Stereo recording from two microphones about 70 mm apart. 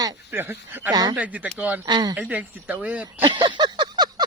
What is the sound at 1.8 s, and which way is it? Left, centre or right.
Speech, right.